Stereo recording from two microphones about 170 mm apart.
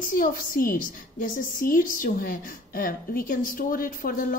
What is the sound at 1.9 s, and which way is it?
A woman's voice, 55° left (ahead or behind).